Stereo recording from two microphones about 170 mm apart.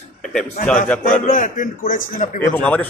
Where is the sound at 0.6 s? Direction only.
55° left (ahead or behind).